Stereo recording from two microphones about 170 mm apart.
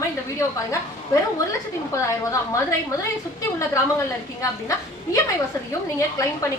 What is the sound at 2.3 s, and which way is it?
Speech, 20° left (ahead or behind).